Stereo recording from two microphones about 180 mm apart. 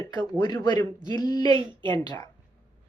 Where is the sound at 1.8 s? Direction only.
25° right (ahead or behind).